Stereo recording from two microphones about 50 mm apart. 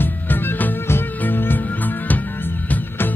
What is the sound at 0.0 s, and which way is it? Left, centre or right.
Music, left.